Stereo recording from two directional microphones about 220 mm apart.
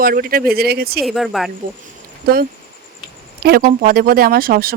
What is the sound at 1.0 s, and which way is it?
Speech, centre (ahead or behind).